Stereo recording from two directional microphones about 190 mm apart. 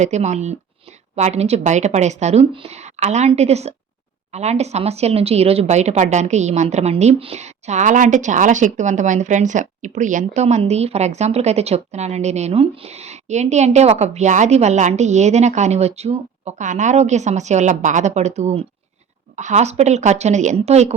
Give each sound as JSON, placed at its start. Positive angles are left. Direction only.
{"t": 0.0, "sound": "a woman's voice", "side_deg": -35}